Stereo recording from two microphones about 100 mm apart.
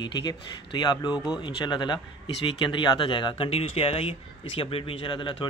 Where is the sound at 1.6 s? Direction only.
50° left (ahead or behind).